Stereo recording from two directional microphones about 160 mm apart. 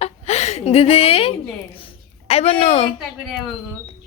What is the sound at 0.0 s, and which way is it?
A woman's voice, 45° left (ahead or behind).